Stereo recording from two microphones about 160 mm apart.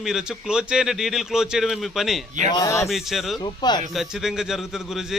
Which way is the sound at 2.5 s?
20° left (ahead or behind).